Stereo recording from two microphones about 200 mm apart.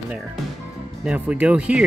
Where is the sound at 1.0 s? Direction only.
5° right (ahead or behind).